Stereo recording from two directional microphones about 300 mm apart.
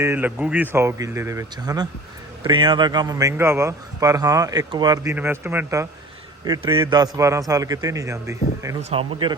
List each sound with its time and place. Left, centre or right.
0.0 s speech: centre